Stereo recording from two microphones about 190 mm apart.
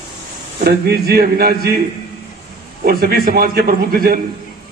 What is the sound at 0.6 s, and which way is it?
A man's voice, 55° right (ahead or behind).